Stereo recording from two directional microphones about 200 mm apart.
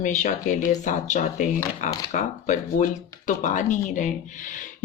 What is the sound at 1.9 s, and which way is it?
Speech, 20° left (ahead or behind).